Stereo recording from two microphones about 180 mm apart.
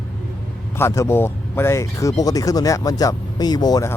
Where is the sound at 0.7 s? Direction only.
15° left (ahead or behind).